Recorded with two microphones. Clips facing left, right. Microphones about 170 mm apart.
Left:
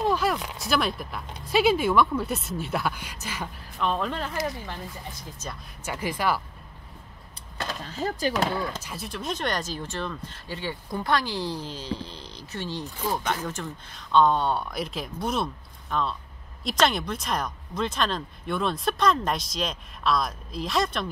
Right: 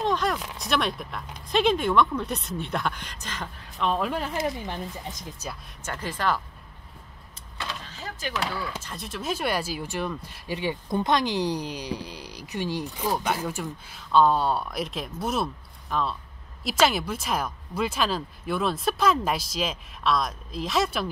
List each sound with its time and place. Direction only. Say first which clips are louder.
0.0 s a sound: left 1 dB; 5° left (ahead or behind)
0.6 s speech: left 1 dB; centre (ahead or behind)
3.8 s speech: right 1 dB; 5° right (ahead or behind)
4.3 s speech: right 2 dB; 20° right (ahead or behind)
5.9 s speech: left 1 dB; 10° left (ahead or behind)
7.5 s speech: left 4 dB; 45° left (ahead or behind)
8.8 s speech: right 1 dB; centre (ahead or behind)